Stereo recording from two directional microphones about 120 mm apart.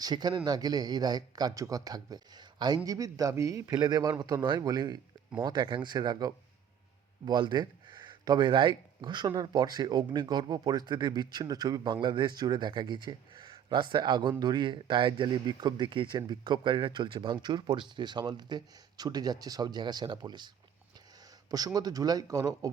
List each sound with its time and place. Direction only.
0.0 s speech: 35° right (ahead or behind)
21.5 s speech: 30° right (ahead or behind)